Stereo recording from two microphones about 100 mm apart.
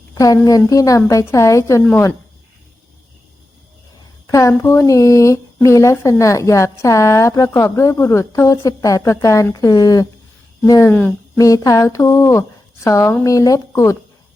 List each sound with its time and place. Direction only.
0.1 s a woman's voice: 35° left (ahead or behind)
4.3 s a woman's voice: 35° left (ahead or behind)